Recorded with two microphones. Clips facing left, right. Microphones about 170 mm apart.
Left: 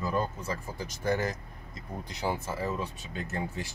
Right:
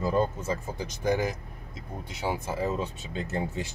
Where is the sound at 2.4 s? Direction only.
20° right (ahead or behind).